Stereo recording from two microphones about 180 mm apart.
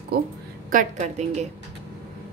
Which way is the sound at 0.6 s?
45° right (ahead or behind).